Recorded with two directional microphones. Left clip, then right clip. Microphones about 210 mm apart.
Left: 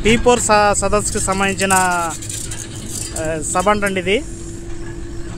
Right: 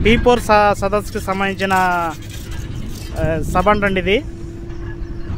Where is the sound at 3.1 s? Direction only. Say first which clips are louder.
Right 1 dB; 5° right (ahead or behind).